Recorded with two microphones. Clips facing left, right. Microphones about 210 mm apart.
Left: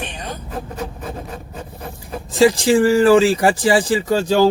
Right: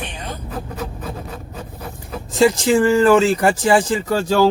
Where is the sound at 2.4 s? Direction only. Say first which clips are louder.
Left 1 dB; 10° left (ahead or behind).